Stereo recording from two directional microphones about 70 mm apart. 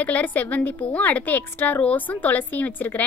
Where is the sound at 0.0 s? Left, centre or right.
Left.